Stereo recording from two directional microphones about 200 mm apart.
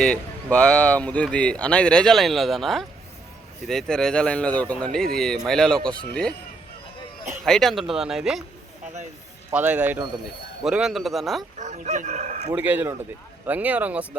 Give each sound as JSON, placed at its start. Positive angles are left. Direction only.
{"t": 0.5, "sound": "speech", "side_deg": 5}
{"t": 7.4, "sound": "speech", "side_deg": 0}
{"t": 9.5, "sound": "speech", "side_deg": -10}
{"t": 11.5, "sound": "speech", "side_deg": -35}
{"t": 12.5, "sound": "speech", "side_deg": -10}